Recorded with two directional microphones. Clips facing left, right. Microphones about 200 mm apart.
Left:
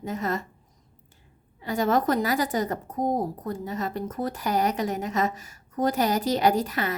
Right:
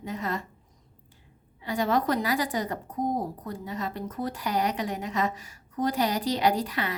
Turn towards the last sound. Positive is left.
turn(degrees=45)  # may be behind; listen again after turning